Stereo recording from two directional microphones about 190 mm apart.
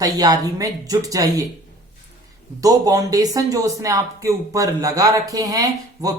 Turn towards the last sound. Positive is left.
turn(degrees=-20)  # may be behind; listen again after turning